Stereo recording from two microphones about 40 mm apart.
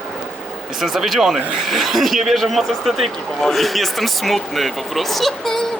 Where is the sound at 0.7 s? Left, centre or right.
Centre.